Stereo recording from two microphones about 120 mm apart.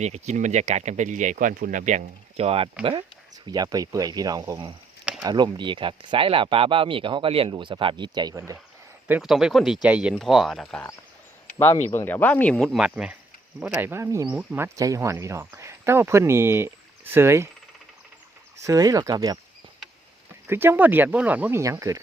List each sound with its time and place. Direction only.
0.0 s speech: 70° right (ahead or behind)
3.4 s speech: 35° right (ahead or behind)
9.2 s speech: 5° right (ahead or behind)
11.9 s speech: 15° left (ahead or behind); by 13.1 s 5° right (ahead or behind)
13.8 s speech: 20° right (ahead or behind)
14.3 s speech: 15° right (ahead or behind)
18.6 s speech: 30° right (ahead or behind)
20.5 s speech: 20° right (ahead or behind)
21.6 s speech: 25° right (ahead or behind)